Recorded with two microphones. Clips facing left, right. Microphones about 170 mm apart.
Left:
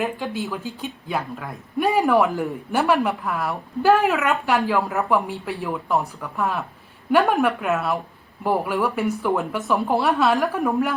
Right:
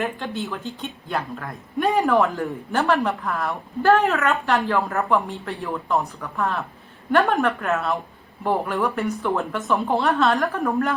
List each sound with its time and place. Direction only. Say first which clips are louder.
0.0 s a woman's voice: left 1 dB; centre (ahead or behind)
2.0 s a man's voice: left 1 dB; 15° left (ahead or behind)